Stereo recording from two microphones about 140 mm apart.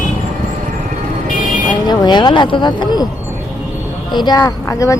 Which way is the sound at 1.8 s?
30° left (ahead or behind).